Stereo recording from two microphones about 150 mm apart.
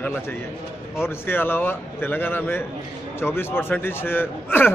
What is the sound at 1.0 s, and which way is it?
A man's voice, 15° left (ahead or behind).